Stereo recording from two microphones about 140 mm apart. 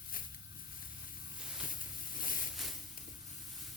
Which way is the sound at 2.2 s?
85° left.